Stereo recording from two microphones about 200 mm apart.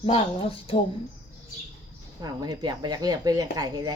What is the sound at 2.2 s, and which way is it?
Speech, 20° right (ahead or behind).